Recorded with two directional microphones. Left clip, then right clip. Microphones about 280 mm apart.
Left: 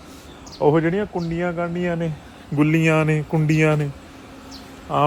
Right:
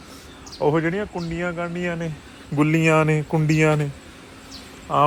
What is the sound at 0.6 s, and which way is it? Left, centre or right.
Speech, centre.